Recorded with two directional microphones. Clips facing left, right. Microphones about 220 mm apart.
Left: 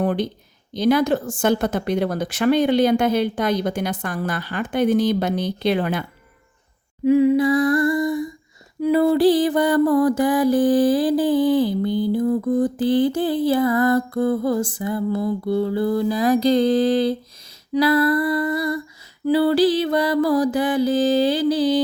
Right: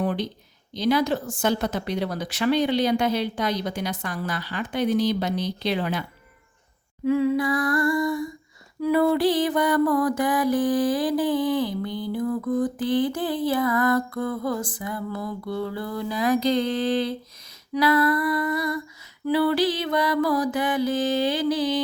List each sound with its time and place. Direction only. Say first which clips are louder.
0.0 s a sound: left 4 dB; 50° left (ahead or behind)
0.7 s a woman's voice: left 4 dB; 50° left (ahead or behind)
7.0 s humming: left 6 dB; 20° left (ahead or behind)
8.8 s mantra: left 4 dB; 25° left (ahead or behind)